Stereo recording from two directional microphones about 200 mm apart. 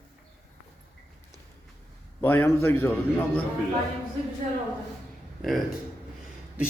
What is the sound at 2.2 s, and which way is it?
Speech, 10° left (ahead or behind).